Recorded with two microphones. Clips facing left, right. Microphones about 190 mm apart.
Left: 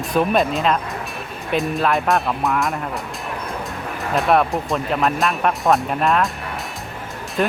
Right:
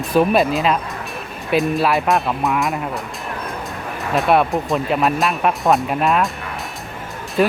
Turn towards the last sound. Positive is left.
turn(degrees=-5)  # may be behind; listen again after turning